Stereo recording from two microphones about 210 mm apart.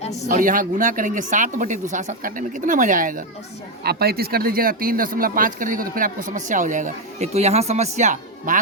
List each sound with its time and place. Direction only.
0.3 s speech: 40° right (ahead or behind)